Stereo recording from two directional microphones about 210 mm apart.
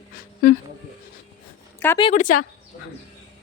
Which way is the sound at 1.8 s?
10° left (ahead or behind).